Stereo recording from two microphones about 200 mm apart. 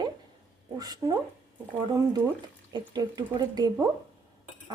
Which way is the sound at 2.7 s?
20° right (ahead or behind).